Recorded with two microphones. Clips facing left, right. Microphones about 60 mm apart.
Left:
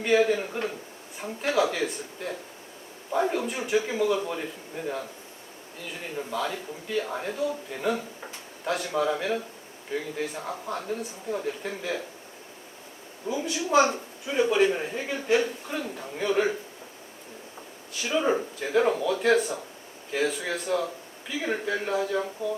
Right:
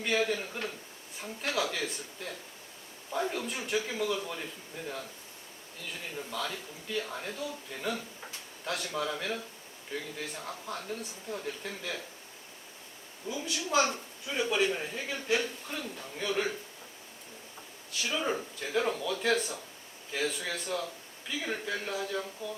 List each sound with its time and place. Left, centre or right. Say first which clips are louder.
0.0 s speech: left 8 dB; centre
3.1 s speech: left 7 dB; left
3.3 s a man's voice: left 7 dB; centre
6.3 s speech: left 7 dB; centre
13.5 s a woman's voice: left 6 dB; centre
18.1 s speech: left 8 dB; centre